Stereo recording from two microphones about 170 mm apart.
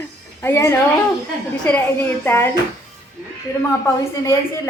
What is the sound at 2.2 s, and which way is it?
Speech, 15° left (ahead or behind).